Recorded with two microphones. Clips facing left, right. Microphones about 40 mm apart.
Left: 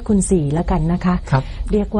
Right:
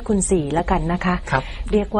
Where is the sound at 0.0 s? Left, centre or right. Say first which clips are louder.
Left 3 dB; right.